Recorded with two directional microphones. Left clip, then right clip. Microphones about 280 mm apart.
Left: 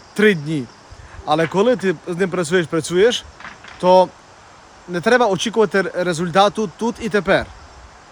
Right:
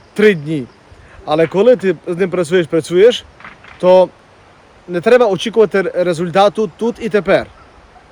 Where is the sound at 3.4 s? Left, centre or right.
Left.